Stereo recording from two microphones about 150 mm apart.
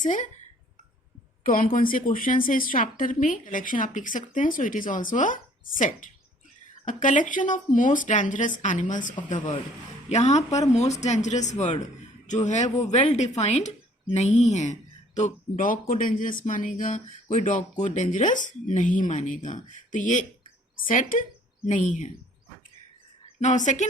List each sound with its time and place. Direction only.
0.0 s a woman's voice: 60° left (ahead or behind)
1.5 s a woman's voice: 65° left (ahead or behind)
23.4 s speech: 55° left (ahead or behind)